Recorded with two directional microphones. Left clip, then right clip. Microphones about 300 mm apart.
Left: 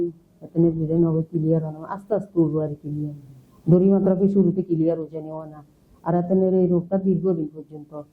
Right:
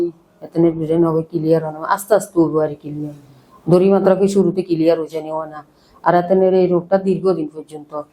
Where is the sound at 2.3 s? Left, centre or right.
Centre.